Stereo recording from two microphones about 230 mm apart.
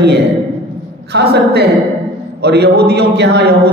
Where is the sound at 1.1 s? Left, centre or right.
Right.